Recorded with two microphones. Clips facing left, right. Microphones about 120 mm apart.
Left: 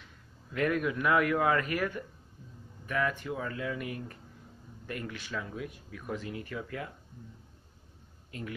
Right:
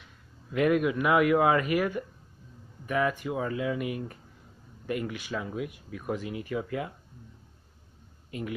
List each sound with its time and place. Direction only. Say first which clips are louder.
0.5 s speech: right 5 dB; 15° right (ahead or behind)
8.3 s speech: right 5 dB; 15° right (ahead or behind)